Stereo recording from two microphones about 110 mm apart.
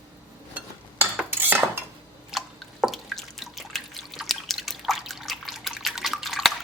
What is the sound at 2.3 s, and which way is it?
Drip, centre (ahead or behind).